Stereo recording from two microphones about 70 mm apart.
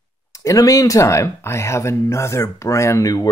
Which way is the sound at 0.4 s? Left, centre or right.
Left.